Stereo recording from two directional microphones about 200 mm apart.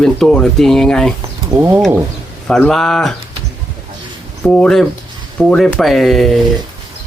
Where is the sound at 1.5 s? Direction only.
10° right (ahead or behind).